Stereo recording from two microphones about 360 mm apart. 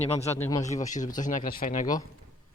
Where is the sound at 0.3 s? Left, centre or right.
Centre.